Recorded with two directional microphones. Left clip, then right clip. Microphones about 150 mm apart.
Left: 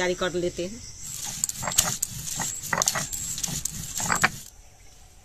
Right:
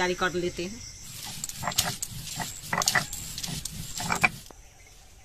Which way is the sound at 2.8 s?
5° left (ahead or behind).